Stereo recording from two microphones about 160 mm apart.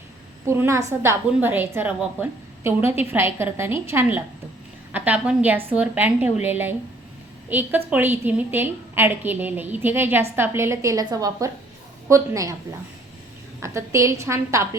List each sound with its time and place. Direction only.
0.4 s a woman's voice: 15° right (ahead or behind)
13.6 s a woman's voice: 20° right (ahead or behind)